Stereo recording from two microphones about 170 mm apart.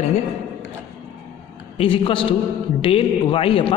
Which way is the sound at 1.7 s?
30° left (ahead or behind).